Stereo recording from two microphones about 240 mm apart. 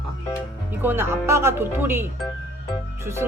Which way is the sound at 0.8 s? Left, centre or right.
Centre.